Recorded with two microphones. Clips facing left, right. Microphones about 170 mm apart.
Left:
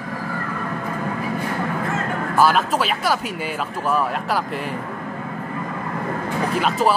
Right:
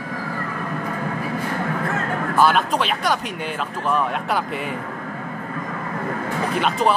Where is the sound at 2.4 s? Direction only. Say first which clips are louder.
Left 1 dB; 5° left (ahead or behind).